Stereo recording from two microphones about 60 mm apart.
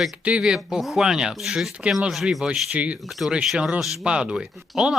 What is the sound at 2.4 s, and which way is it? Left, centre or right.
Speech, right.